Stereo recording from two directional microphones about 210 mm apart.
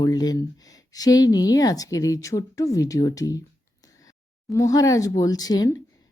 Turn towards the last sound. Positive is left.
turn(degrees=15)  # may be behind; listen again after turning